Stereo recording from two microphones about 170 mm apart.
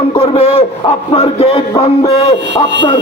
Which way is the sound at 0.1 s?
35° left (ahead or behind).